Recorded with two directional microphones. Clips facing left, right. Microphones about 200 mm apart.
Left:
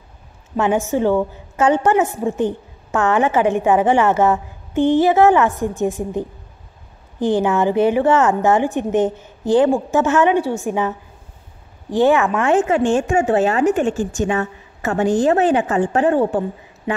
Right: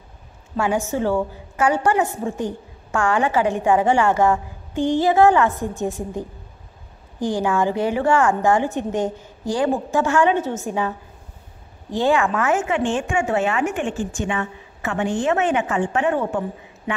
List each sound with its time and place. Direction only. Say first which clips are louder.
0.6 s a woman's voice: left 4 dB; 20° left (ahead or behind)
4.2 s a sound: left 2 dB; 20° left (ahead or behind)
5.1 s a woman's voice: left 2 dB; 20° left (ahead or behind)
7.2 s speech: left 5 dB; 15° right (ahead or behind)
7.4 s a woman's voice: left 3 dB; 20° left (ahead or behind)
12.4 s a woman's voice: left 5 dB; 35° left (ahead or behind)